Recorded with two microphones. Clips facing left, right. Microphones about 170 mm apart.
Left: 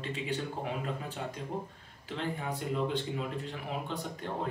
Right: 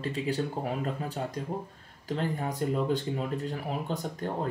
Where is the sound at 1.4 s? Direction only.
40° right (ahead or behind).